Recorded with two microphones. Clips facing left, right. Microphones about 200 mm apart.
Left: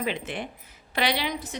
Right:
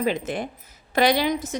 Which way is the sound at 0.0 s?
40° right (ahead or behind).